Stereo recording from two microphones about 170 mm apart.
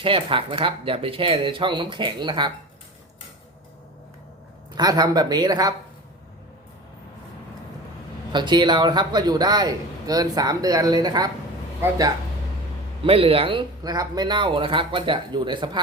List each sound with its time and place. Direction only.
0.0 s speech: 30° right (ahead or behind)
4.7 s a man's voice: 25° right (ahead or behind)
8.3 s a man's voice: 25° right (ahead or behind)
13.1 s a man's voice: 35° right (ahead or behind)